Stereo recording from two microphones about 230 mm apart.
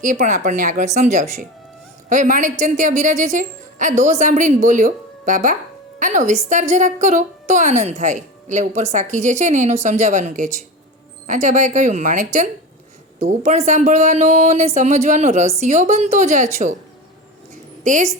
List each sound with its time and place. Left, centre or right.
0.0 s a woman's voice: right
17.8 s a woman's voice: right